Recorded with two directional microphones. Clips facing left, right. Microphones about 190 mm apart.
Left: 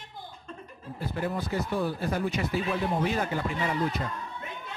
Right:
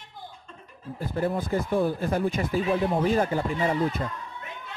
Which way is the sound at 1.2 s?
50° right (ahead or behind).